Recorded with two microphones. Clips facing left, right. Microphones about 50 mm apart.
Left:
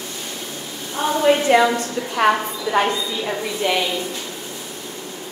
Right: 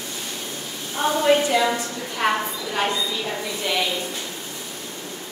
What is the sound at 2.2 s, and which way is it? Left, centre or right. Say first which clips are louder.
Speech: left 5 dB; left.